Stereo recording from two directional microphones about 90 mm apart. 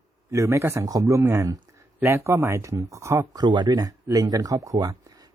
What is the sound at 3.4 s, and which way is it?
Speech, 50° right (ahead or behind).